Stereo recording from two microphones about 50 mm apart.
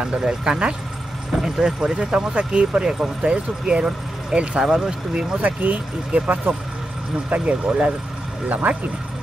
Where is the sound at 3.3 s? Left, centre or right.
Centre.